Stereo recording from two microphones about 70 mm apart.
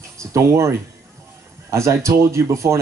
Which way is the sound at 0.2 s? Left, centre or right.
Right.